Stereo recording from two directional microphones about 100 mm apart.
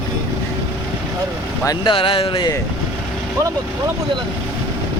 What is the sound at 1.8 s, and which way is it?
Speech, 55° left (ahead or behind).